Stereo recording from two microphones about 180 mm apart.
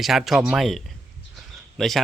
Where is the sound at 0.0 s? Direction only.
Centre (ahead or behind).